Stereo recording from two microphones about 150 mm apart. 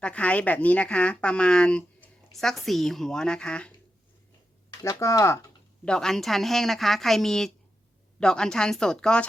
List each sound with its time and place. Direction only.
0.0 s speech: 10° left (ahead or behind)
4.8 s speech: 20° left (ahead or behind)
5.8 s a woman's voice: 5° left (ahead or behind)